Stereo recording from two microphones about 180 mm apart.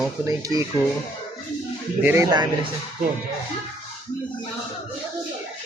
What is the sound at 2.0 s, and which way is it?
Music, 10° right (ahead or behind).